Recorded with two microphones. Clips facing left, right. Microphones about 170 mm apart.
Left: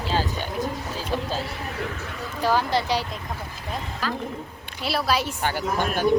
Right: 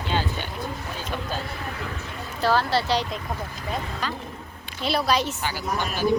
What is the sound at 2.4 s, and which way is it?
Speech, 15° left (ahead or behind).